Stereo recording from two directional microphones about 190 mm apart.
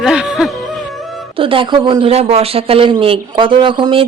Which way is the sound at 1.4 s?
25° right (ahead or behind).